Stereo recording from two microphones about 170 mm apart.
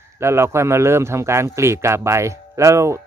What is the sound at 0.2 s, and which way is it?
Speech, 15° right (ahead or behind).